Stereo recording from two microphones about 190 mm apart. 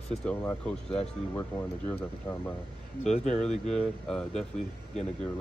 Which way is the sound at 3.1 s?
35° left (ahead or behind).